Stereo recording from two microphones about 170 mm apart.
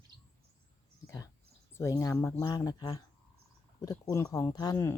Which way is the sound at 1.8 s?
15° left (ahead or behind).